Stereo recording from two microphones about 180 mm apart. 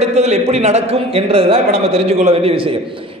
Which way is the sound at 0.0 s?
40° right (ahead or behind).